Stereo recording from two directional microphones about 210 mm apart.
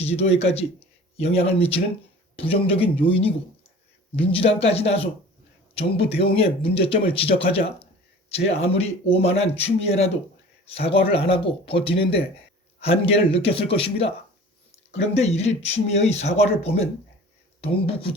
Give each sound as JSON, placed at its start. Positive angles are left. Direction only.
{"t": 0.0, "sound": "speech", "side_deg": 30}
{"t": 15.1, "sound": "speech", "side_deg": 30}